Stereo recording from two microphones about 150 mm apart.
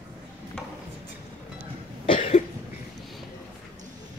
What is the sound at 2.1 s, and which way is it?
Cough, 45° left (ahead or behind).